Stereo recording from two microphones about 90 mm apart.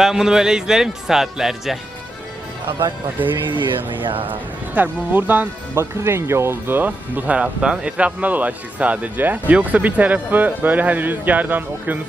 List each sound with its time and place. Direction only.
0.0 s speech: 5° right (ahead or behind)
3.2 s speech: 20° right (ahead or behind)
3.5 s speech: 65° right (ahead or behind)
4.3 s speech: 20° right (ahead or behind)